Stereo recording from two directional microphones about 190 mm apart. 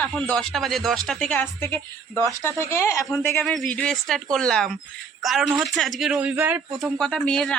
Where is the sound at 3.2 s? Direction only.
5° left (ahead or behind).